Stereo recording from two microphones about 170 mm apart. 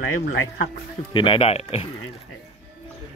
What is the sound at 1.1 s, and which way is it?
Speech, 30° left (ahead or behind).